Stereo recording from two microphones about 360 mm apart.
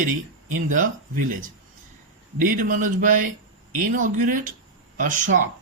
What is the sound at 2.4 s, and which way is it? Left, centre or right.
Speech, right.